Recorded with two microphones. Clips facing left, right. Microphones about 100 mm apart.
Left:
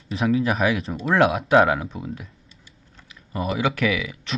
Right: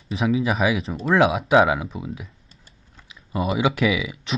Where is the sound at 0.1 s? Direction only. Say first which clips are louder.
Even; centre (ahead or behind).